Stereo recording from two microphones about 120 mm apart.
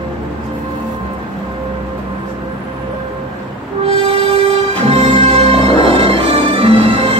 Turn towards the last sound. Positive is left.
turn(degrees=-55)  # may be behind; listen again after turning